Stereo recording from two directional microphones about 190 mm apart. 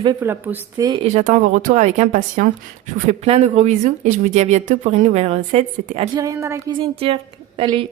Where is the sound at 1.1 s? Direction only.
40° right (ahead or behind).